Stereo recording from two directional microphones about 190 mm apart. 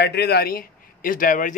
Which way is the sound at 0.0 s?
60° left (ahead or behind).